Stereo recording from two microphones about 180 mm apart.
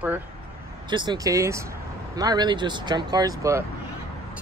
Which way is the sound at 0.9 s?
25° right (ahead or behind).